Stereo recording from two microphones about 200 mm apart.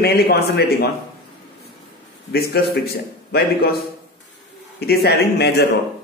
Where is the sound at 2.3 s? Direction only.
50° left (ahead or behind).